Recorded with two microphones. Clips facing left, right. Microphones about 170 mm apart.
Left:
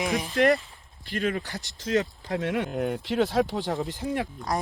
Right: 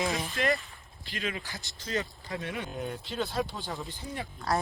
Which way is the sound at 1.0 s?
50° left (ahead or behind).